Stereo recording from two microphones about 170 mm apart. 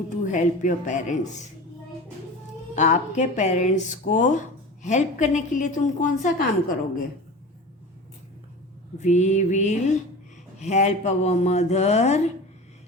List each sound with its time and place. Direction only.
0.2 s speech: 45° left (ahead or behind)
2.7 s speech: 45° left (ahead or behind)
9.0 s speech: 45° left (ahead or behind)